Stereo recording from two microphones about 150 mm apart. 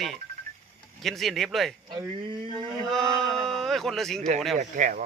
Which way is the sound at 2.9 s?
Centre (ahead or behind).